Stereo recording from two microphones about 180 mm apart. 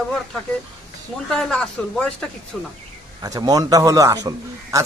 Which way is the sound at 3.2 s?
20° right (ahead or behind).